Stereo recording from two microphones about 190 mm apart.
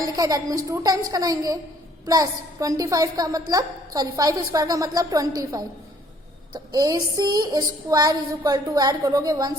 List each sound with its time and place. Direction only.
0.0 s a woman's voice: 20° right (ahead or behind)